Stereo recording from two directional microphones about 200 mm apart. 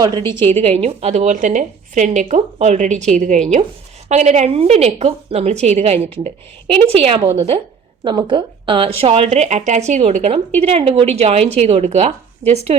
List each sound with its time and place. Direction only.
0.6 s a woman's voice: 30° right (ahead or behind)
12.4 s speech: 15° right (ahead or behind)